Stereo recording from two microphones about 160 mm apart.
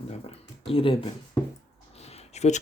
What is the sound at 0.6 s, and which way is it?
Speech, 35° left (ahead or behind).